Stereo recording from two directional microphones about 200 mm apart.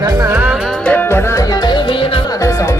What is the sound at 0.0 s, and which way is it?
Music, 20° right (ahead or behind).